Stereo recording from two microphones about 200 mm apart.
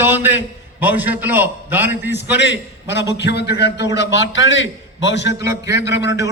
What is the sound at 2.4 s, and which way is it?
A man's voice, 60° left (ahead or behind).